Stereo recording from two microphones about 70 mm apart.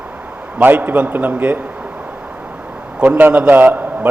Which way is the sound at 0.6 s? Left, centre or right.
Right.